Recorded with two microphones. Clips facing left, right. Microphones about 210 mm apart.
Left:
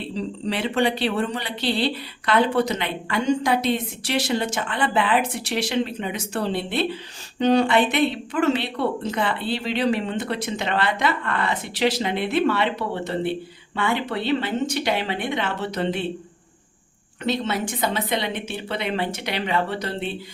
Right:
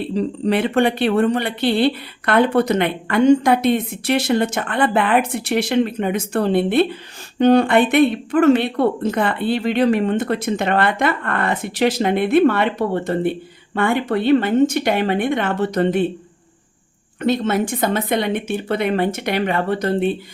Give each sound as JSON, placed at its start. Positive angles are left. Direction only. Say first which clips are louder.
{"t": 0.1, "sound": "speech", "louder": "right 8 dB", "side_deg": -55}
{"t": 17.2, "sound": "speech", "louder": "right 6 dB", "side_deg": -50}